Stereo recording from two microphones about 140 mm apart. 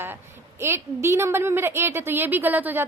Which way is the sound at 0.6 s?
20° right (ahead or behind).